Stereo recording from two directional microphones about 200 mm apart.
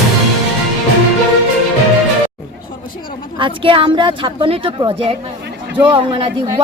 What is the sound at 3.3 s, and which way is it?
Speech, 25° right (ahead or behind).